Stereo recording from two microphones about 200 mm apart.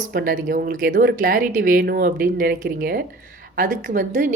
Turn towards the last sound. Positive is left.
turn(degrees=-40)  # may be behind; listen again after turning